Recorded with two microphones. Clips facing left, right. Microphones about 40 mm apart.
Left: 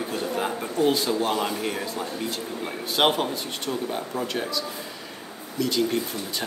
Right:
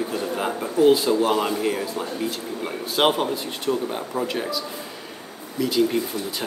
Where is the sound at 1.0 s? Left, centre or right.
Centre.